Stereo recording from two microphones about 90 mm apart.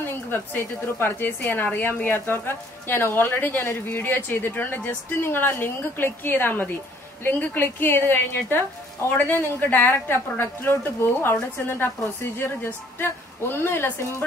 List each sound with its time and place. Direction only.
0.0 s a woman's voice: 25° left (ahead or behind)
12.4 s a woman's voice: 25° left (ahead or behind)